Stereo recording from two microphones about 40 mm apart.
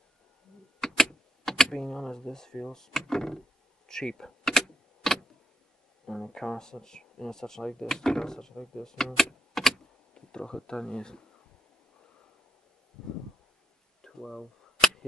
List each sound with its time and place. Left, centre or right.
0.7 s typewriter: centre
6.0 s speech: centre
10.1 s speech: left
13.0 s a sound: centre
14.0 s cap gun: centre